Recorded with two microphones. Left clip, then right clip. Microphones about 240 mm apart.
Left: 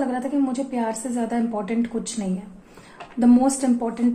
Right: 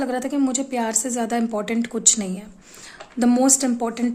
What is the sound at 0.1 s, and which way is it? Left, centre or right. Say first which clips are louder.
A woman's voice: right 1 dB; right.